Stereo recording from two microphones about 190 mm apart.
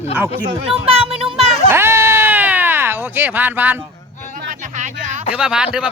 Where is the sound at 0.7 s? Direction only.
30° right (ahead or behind).